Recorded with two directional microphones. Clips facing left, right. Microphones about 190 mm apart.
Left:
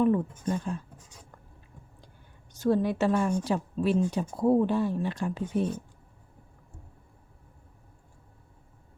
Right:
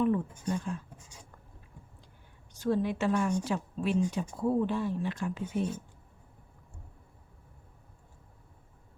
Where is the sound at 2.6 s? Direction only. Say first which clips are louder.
Left 4 dB; 40° left (ahead or behind).